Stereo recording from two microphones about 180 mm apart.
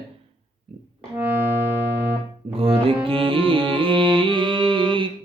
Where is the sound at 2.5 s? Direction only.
30° right (ahead or behind).